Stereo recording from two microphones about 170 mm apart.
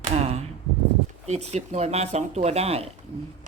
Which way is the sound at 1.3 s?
40° right (ahead or behind).